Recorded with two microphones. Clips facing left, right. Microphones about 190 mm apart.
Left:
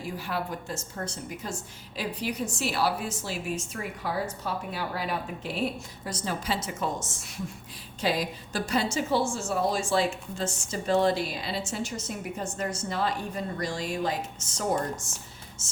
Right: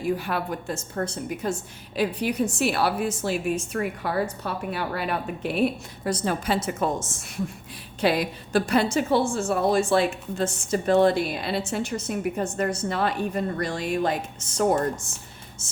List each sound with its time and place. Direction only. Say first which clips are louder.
0.2 s a woman's voice: right 4 dB; 60° right (ahead or behind)
8.0 s a woman's voice: right 5 dB; 65° right (ahead or behind)